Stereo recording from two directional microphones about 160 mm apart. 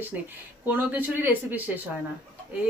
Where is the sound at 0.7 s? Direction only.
10° right (ahead or behind).